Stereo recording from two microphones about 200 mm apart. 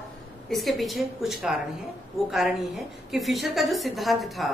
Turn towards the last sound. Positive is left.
turn(degrees=0)  # may be behind; listen again after turning